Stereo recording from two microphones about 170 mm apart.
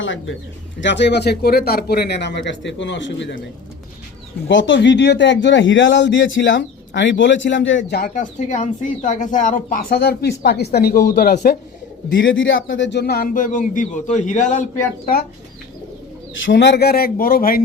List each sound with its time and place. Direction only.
0.8 s a man's voice: 90° left
4.4 s a man's voice: 90° left; by 10.0 s 50° left (ahead or behind)
10.0 s speech: 75° left (ahead or behind)
12.1 s a man's voice: 90° left; by 14.6 s 45° left (ahead or behind)
16.5 s speech: 90° left; by 17.6 s 55° left (ahead or behind)